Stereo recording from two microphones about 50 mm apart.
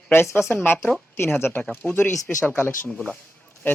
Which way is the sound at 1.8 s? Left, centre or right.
Left.